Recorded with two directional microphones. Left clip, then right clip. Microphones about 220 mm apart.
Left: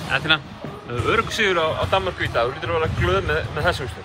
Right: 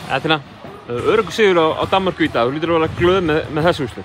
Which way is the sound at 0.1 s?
15° right (ahead or behind).